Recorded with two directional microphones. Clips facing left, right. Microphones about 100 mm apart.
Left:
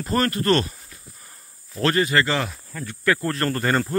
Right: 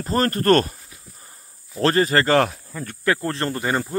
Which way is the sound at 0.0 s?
35° right (ahead or behind).